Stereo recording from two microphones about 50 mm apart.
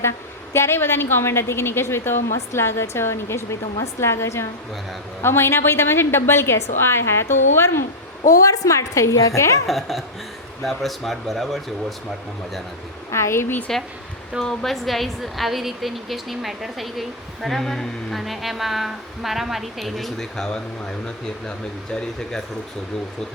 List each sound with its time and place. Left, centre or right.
0.5 s a woman's voice: left
5.2 s a woman's voice: left
8.3 s a woman's voice: left
9.6 s a woman's voice: centre
13.1 s speech: left
13.7 s a woman's voice: centre